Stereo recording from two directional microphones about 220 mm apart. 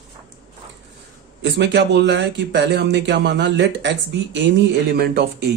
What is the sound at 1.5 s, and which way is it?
Speech, 55° right (ahead or behind).